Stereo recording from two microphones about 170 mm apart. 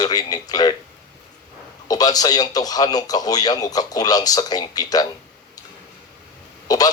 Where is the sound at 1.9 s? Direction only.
20° left (ahead or behind).